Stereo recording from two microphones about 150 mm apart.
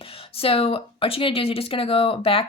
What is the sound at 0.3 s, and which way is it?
Speech, 40° left (ahead or behind).